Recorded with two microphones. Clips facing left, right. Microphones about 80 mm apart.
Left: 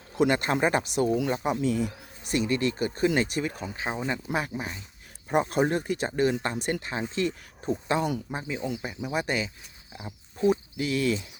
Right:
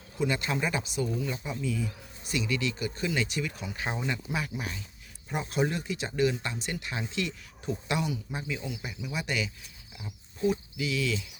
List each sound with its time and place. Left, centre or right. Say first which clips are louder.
0.2 s speech: left 6 dB; left
2.3 s speech: left 5 dB; left
3.8 s speech: left 2 dB; left
4.3 s speech: left 4 dB; left